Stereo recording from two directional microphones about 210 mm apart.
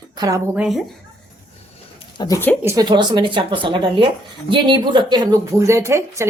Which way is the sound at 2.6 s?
20° right (ahead or behind).